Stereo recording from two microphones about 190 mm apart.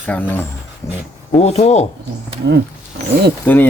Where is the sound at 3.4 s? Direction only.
10° left (ahead or behind).